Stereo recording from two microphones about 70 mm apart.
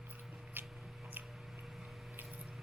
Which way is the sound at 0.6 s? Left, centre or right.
Right.